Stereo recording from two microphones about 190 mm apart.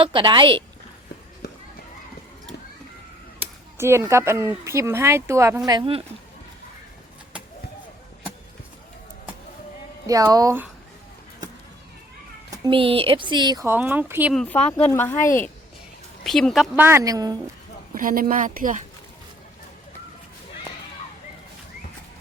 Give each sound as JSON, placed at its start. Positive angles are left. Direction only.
{"t": 0.0, "sound": "speech", "side_deg": -25}
{"t": 3.8, "sound": "speech", "side_deg": -15}
{"t": 10.1, "sound": "speech", "side_deg": -20}
{"t": 12.5, "sound": "speech", "side_deg": -25}
{"t": 14.3, "sound": "speech", "side_deg": 5}
{"t": 16.2, "sound": "speech", "side_deg": 0}
{"t": 16.7, "sound": "speech", "side_deg": -10}
{"t": 17.9, "sound": "a woman's voice", "side_deg": -45}